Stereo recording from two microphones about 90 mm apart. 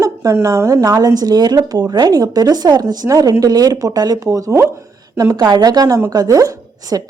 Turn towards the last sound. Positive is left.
turn(degrees=-40)  # may be behind; listen again after turning